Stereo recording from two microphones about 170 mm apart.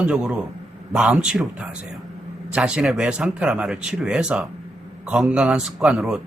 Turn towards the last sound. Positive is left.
turn(degrees=0)  # may be behind; listen again after turning